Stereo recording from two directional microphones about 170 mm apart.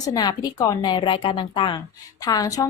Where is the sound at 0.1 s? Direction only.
20° left (ahead or behind).